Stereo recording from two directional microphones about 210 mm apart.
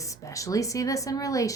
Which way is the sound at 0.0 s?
15° left (ahead or behind).